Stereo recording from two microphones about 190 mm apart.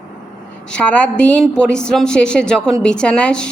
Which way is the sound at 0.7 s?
5° left (ahead or behind).